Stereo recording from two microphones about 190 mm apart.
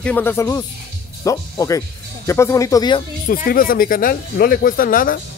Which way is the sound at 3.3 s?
50° left (ahead or behind).